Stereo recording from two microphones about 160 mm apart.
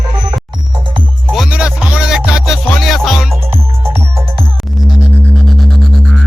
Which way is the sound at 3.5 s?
15° right (ahead or behind).